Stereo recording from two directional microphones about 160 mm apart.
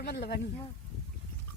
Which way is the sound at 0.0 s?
90° left.